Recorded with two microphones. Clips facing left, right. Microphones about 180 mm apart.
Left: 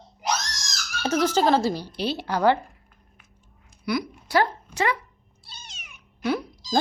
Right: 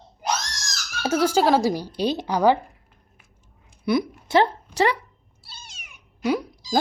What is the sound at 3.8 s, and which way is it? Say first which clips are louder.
Speech: right 5 dB; 25° right (ahead or behind).